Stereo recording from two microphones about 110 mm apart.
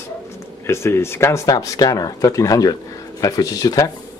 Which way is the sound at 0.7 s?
25° left (ahead or behind).